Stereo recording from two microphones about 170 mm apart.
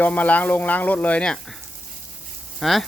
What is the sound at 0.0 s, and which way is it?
Speech, 10° left (ahead or behind).